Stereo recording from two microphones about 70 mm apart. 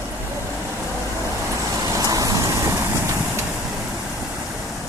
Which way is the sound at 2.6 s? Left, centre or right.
Right.